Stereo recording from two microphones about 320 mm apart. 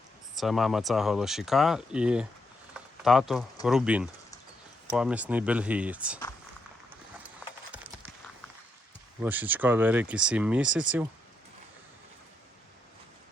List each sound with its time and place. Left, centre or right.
0.3 s speech: centre
2.7 s a sound: centre
3.7 s speech: centre
7.4 s clip-clop: centre
9.2 s speech: centre